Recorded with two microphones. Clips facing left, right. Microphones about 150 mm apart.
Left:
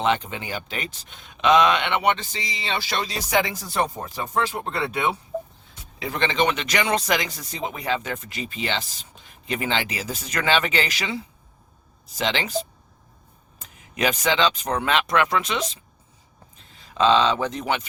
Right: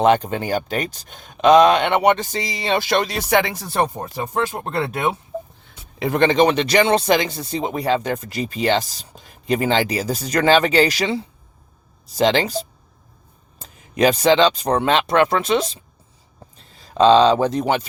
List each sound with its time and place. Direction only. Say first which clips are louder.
0.0 s speech: right 7 dB; 45° right (ahead or behind); by 3.6 s 70° right (ahead or behind)
4.4 s speech: right 3 dB; 50° right (ahead or behind)
5.3 s a sound: even; centre (ahead or behind)
6.0 s speech: right 8 dB; 50° right (ahead or behind)